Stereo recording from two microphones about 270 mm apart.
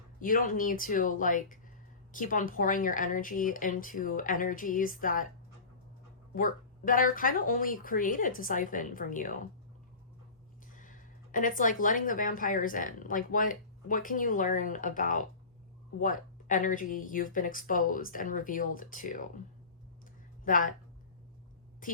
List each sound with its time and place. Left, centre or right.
0.2 s speech: left
6.3 s speech: left
10.7 s speech: left
20.4 s speech: left
21.8 s speech: left